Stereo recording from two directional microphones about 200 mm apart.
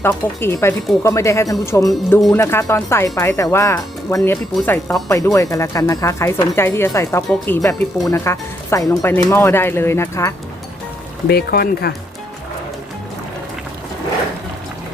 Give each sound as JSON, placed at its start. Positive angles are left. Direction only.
{"t": 0.0, "sound": "speech", "side_deg": 10}
{"t": 11.3, "sound": "speech", "side_deg": 50}